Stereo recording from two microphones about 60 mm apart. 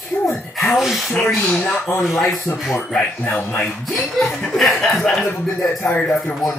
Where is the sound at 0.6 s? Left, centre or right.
Centre.